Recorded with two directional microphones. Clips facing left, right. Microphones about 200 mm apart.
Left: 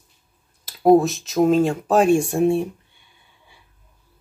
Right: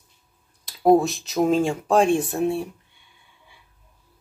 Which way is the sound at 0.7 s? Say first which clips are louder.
Left 3 dB; centre (ahead or behind).